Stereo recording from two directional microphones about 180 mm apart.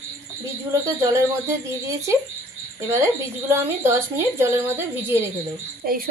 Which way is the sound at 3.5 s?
15° right (ahead or behind).